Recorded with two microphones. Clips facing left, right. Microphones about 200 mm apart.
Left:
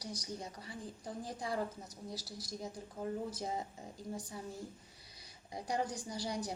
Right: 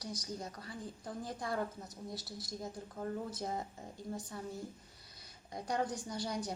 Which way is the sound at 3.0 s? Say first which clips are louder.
Even; 10° left (ahead or behind).